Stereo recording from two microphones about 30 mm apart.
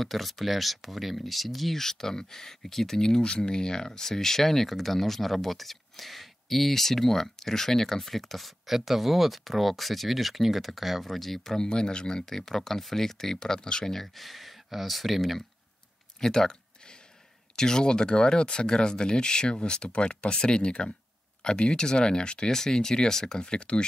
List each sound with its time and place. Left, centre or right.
0.0 s speech: centre
1.8 s speech: centre
3.2 s speech: left; by 11.5 s centre
11.5 s speech: left
14.0 s speech: centre
16.2 s a sound: left
17.6 s speech: left